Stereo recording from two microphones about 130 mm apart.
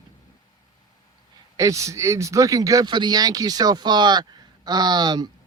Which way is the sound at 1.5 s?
25° right (ahead or behind).